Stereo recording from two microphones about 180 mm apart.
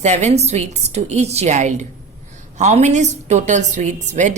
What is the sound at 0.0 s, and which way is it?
Speech, 40° right (ahead or behind).